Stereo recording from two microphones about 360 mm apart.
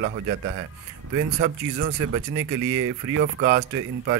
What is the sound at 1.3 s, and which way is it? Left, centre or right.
Speech, right.